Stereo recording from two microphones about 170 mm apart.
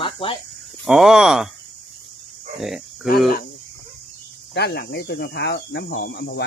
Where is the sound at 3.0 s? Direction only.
Centre (ahead or behind).